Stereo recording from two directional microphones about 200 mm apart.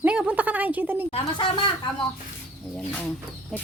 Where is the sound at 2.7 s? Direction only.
5° left (ahead or behind).